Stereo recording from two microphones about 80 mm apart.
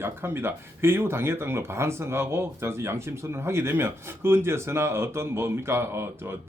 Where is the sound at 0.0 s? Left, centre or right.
Right.